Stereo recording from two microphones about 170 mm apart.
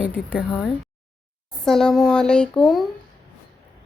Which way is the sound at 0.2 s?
Centre (ahead or behind).